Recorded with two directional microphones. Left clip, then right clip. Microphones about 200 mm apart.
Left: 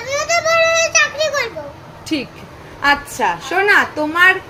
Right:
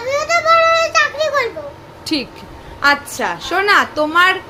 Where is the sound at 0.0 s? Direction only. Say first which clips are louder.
Right 2 dB; 15° right (ahead or behind).